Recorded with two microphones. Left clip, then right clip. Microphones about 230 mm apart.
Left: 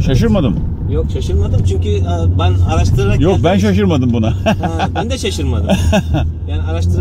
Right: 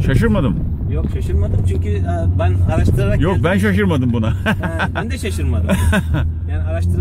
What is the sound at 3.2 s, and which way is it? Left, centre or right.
Speech, right.